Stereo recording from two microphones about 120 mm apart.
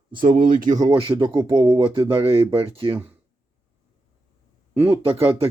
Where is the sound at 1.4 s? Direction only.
35° right (ahead or behind).